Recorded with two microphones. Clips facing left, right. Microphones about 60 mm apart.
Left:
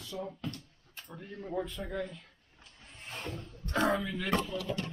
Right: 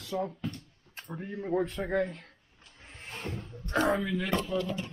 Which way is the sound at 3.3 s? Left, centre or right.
Right.